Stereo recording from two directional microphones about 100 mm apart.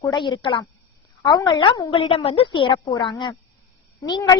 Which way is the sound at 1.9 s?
60° left (ahead or behind).